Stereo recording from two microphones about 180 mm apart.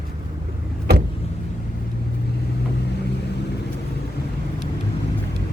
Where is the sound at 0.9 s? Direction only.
65° right (ahead or behind).